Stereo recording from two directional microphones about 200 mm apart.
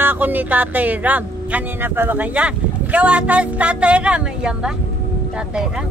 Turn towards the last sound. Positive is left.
turn(degrees=-5)  # may be behind; listen again after turning